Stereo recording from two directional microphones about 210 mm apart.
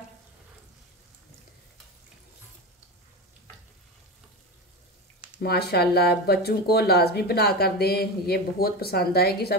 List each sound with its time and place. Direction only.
5.4 s speech: 50° left (ahead or behind)